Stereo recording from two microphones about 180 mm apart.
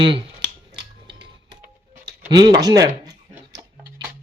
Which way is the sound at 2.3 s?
25° right (ahead or behind).